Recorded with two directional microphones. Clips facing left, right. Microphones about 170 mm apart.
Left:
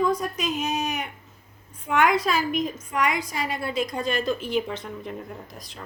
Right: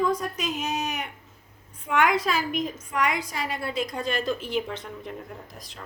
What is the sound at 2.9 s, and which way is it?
A woman's voice, 15° left (ahead or behind).